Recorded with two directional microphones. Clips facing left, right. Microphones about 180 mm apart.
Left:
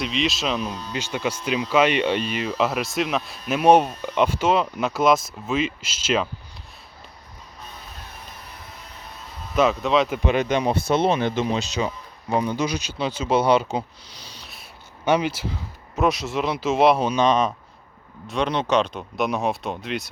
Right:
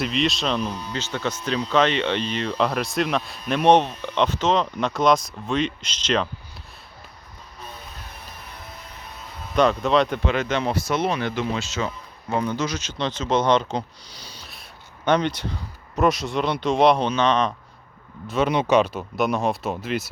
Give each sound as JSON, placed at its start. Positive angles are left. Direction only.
{"t": 0.0, "sound": "speech", "side_deg": 0}
{"t": 9.6, "sound": "speech", "side_deg": 0}
{"t": 10.2, "sound": "speech", "side_deg": 15}
{"t": 15.0, "sound": "speech", "side_deg": 5}
{"t": 18.3, "sound": "speech", "side_deg": -5}